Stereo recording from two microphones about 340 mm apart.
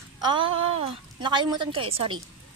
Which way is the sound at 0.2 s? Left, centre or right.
Centre.